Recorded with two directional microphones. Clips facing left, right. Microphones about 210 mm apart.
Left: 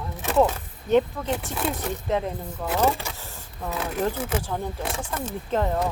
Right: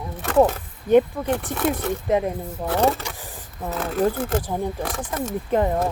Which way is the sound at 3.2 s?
15° right (ahead or behind).